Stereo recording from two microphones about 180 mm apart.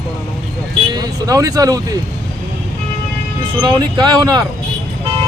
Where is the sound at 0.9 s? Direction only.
20° right (ahead or behind).